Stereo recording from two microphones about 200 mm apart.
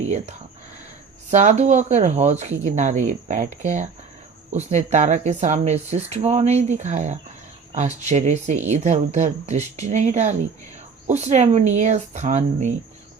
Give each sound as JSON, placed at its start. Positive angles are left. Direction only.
{"t": 0.0, "sound": "speech", "side_deg": -35}